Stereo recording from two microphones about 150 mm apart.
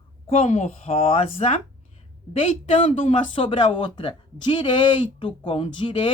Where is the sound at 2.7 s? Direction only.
35° left (ahead or behind).